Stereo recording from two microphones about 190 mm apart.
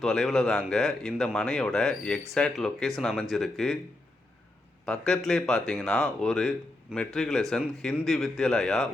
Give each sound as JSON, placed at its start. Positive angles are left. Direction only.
{"t": 0.0, "sound": "speech", "side_deg": 0}
{"t": 4.9, "sound": "speech", "side_deg": 0}